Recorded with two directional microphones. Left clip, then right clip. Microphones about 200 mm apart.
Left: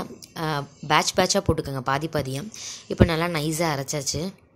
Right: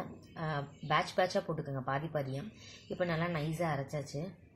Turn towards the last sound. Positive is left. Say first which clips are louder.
# left 10 dB
turn(degrees=45)  # may be behind; listen again after turning